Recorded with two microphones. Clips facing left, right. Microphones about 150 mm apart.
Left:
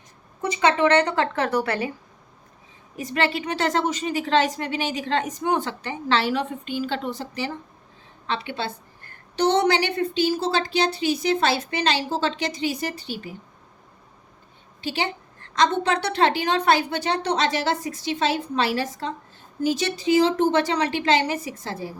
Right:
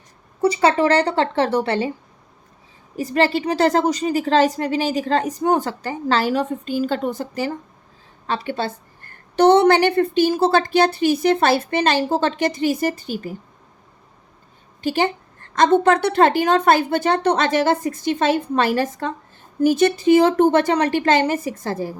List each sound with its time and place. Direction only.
0.5 s a woman's voice: 35° right (ahead or behind)
2.9 s a woman's voice: 35° right (ahead or behind)
14.8 s a woman's voice: 50° right (ahead or behind)